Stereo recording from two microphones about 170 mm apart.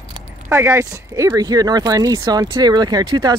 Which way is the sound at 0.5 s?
15° right (ahead or behind).